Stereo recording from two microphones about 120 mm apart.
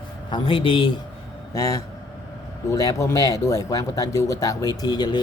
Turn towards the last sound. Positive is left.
turn(degrees=35)  # may be behind; listen again after turning